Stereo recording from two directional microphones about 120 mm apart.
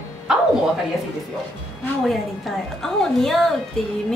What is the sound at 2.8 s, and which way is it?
Speech, centre (ahead or behind).